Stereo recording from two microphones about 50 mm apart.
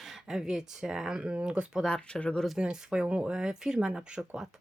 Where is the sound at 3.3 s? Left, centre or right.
Centre.